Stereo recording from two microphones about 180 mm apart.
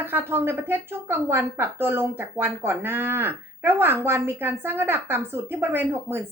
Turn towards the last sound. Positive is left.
turn(degrees=-10)  # may be behind; listen again after turning